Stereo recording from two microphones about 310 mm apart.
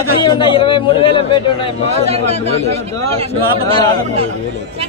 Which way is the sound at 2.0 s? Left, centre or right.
Centre.